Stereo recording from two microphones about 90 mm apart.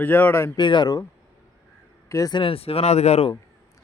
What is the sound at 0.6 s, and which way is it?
Speech, 55° left (ahead or behind).